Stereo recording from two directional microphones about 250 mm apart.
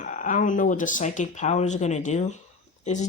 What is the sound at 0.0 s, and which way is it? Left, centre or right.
Speech, left.